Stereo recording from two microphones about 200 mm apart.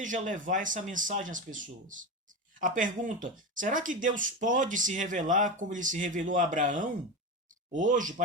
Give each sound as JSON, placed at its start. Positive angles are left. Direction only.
{"t": 0.0, "sound": "speech", "side_deg": -40}